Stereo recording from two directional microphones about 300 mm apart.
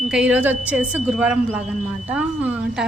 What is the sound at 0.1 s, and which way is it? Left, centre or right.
A woman's voice, centre.